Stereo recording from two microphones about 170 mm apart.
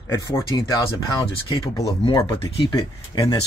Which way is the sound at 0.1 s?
15° left (ahead or behind).